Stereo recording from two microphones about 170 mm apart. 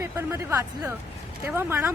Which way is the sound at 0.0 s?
15° right (ahead or behind).